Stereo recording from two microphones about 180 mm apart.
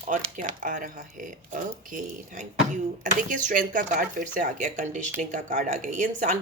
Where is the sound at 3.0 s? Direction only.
45° right (ahead or behind).